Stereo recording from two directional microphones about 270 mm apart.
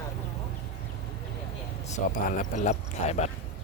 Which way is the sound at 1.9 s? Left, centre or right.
Left.